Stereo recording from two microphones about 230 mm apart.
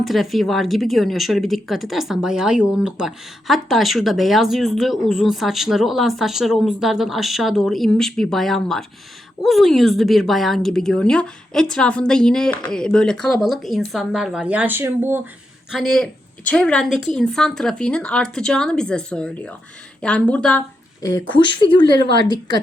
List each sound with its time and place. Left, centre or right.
0.0 s a woman's voice: centre
15.7 s a woman's voice: centre
21.0 s a woman's voice: centre